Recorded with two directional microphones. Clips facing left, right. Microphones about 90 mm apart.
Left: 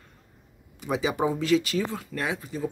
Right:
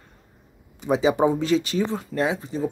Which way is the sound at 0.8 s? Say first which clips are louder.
Right 6 dB; 25° right (ahead or behind).